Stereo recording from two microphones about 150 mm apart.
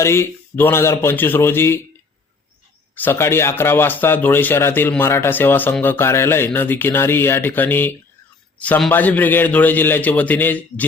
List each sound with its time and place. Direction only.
0.0 s speech: 15° left (ahead or behind)
2.9 s speech: 15° left (ahead or behind)